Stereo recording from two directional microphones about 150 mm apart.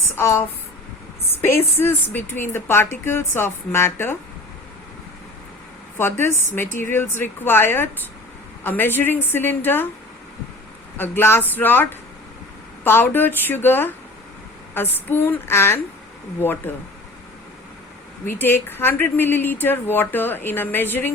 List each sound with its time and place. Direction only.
0.0 s a woman's voice: 15° left (ahead or behind)
6.0 s a woman's voice: 15° left (ahead or behind)
10.9 s a woman's voice: 15° left (ahead or behind)
18.3 s a woman's voice: 15° left (ahead or behind)